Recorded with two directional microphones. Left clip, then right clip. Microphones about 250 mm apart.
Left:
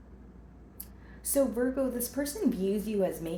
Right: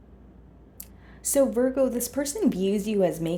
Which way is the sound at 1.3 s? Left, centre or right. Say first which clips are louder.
Right 6 dB; right.